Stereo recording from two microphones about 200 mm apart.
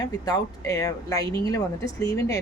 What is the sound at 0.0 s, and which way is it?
Speech, 20° left (ahead or behind).